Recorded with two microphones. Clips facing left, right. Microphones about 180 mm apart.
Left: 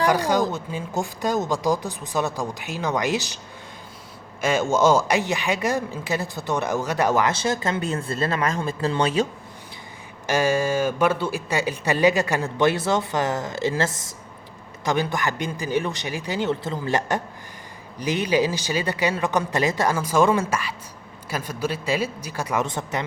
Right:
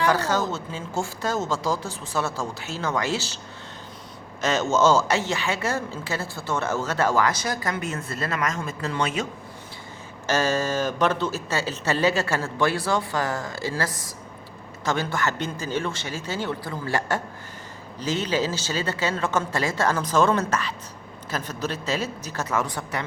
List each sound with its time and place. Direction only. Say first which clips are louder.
0.1 s speech: left 3 dB; 15° left (ahead or behind)
4.4 s speech: left 1 dB; 10° left (ahead or behind); by 9.2 s 35° left (ahead or behind)
10.2 s a woman's voice: left 2 dB; 10° left (ahead or behind)